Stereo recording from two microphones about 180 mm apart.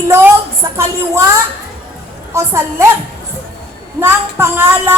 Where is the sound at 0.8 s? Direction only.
15° right (ahead or behind).